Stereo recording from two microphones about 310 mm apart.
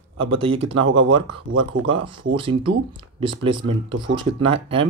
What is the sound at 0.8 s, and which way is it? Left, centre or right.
Speech, right.